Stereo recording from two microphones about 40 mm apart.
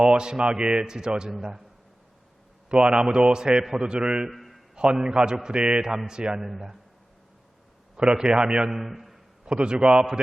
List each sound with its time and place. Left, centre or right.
0.0 s a man's voice: right
2.8 s a man's voice: right
4.4 s a sound: centre
4.7 s a man's voice: centre
8.2 s a man's voice: right